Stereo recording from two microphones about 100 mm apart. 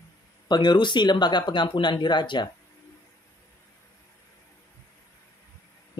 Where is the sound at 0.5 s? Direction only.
50° left (ahead or behind).